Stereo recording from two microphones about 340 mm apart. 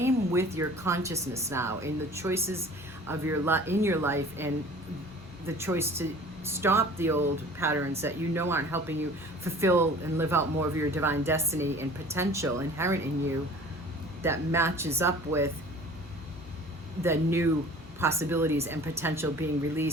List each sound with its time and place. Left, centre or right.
0.0 s speech: centre
5.5 s speech: centre
14.2 s speech: centre
17.0 s speech: centre